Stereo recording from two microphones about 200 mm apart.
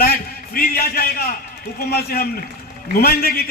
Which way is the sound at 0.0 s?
45° left (ahead or behind).